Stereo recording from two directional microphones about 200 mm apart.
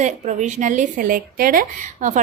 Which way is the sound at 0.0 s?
35° right (ahead or behind).